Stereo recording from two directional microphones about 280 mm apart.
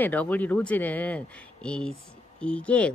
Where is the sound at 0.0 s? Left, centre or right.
Centre.